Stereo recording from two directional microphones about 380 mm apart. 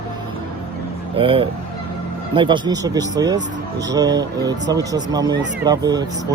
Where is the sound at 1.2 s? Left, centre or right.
Centre.